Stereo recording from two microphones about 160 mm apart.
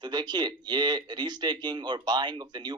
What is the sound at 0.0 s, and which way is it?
Speech, 25° right (ahead or behind).